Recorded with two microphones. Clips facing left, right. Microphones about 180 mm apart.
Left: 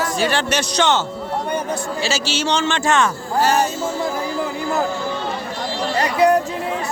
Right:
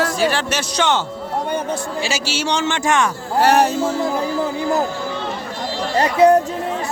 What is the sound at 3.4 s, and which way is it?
Music, 60° right (ahead or behind).